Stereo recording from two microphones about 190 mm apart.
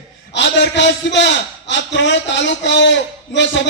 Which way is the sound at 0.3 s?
70° left (ahead or behind).